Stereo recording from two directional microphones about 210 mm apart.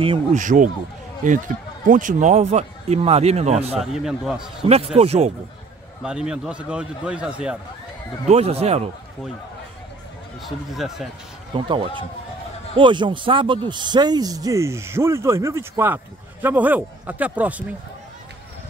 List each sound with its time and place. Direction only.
0.0 s speech: 25° right (ahead or behind)
0.4 s speech: 40° right (ahead or behind)
1.9 s speech: 40° right (ahead or behind)
3.8 s a man's voice: centre (ahead or behind)
4.9 s speech: 30° right (ahead or behind)
6.0 s a man's voice: 5° right (ahead or behind)
8.3 s speech: 30° right (ahead or behind)
10.7 s a man's voice: centre (ahead or behind)
11.5 s speech: 25° right (ahead or behind); by 17.6 s 5° right (ahead or behind)